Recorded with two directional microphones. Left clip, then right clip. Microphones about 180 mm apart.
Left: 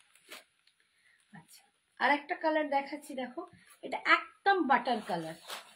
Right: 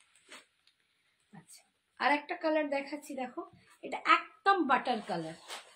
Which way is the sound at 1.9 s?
20° right (ahead or behind).